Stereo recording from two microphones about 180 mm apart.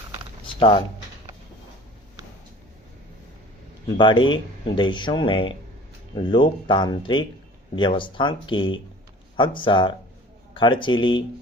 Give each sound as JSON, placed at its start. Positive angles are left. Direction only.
{"t": 0.4, "sound": "shuffling cards", "side_deg": 30}
{"t": 3.9, "sound": "speech", "side_deg": 25}